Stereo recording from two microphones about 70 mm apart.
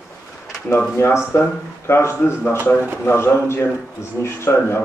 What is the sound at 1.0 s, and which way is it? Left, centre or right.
Speech, left.